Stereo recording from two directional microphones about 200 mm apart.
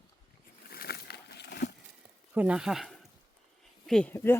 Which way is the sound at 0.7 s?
50° left (ahead or behind).